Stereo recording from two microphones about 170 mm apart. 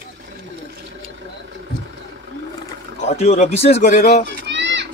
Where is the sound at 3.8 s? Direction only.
50° left (ahead or behind).